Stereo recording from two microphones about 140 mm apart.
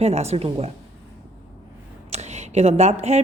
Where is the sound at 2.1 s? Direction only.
55° right (ahead or behind).